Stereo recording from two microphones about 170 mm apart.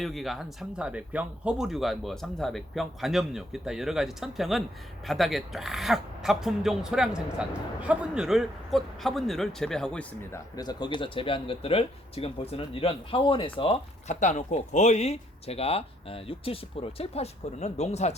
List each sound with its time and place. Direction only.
0.0 s speech: centre (ahead or behind)
10.3 s speech: 20° left (ahead or behind); by 18.1 s 40° left (ahead or behind)